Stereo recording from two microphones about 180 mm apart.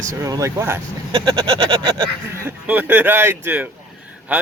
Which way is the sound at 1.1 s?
25° right (ahead or behind).